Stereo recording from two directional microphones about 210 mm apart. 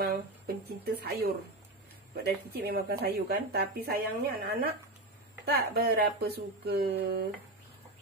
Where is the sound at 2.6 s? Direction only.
45° right (ahead or behind).